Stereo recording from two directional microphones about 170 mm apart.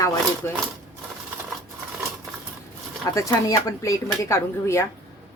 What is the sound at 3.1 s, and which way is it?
Speech, 20° left (ahead or behind).